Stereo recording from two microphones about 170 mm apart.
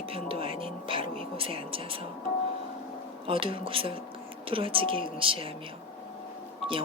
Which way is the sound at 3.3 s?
30° right (ahead or behind).